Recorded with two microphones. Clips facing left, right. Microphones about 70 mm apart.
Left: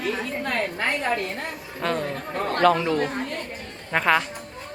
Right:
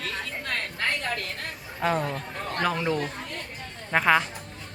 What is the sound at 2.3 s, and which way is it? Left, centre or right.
Speech, left.